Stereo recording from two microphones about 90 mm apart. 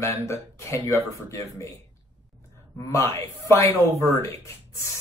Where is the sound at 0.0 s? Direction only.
35° left (ahead or behind).